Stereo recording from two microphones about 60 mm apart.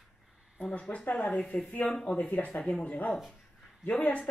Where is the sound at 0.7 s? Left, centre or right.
Left.